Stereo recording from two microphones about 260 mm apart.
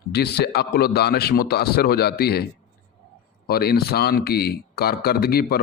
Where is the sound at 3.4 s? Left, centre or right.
Left.